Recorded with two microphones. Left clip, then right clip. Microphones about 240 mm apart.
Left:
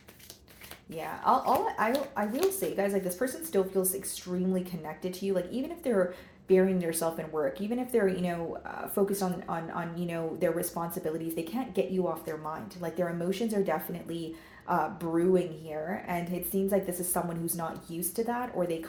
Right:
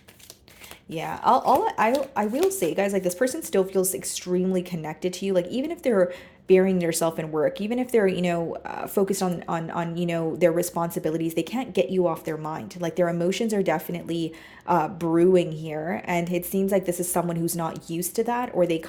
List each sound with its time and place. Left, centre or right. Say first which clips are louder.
0.9 s speech: right 6 dB; right